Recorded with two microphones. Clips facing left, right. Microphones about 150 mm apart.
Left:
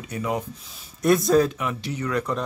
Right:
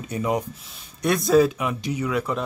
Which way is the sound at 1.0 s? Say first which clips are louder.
Even; centre (ahead or behind).